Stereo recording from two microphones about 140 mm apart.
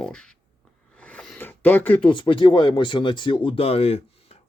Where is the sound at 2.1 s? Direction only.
35° left (ahead or behind).